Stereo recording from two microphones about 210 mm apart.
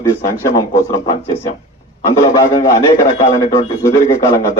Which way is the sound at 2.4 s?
15° left (ahead or behind).